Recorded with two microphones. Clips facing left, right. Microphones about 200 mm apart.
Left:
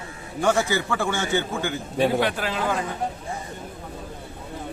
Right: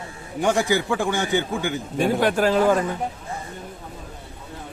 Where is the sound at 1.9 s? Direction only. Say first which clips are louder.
Right 2 dB; 45° right (ahead or behind).